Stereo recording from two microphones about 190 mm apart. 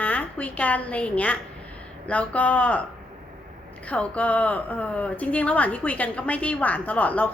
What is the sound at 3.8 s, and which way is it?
Speech, 5° left (ahead or behind).